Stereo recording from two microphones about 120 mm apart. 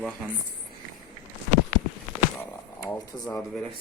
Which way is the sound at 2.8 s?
15° left (ahead or behind).